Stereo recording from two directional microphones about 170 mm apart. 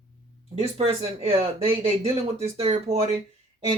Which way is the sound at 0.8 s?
35° right (ahead or behind).